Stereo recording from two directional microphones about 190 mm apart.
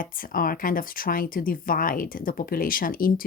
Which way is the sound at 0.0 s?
50° left (ahead or behind).